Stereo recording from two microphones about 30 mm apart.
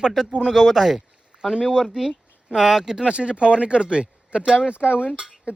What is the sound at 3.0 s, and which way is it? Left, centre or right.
Speech, right.